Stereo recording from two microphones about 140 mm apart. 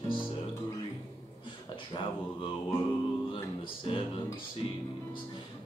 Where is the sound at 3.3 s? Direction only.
40° left (ahead or behind).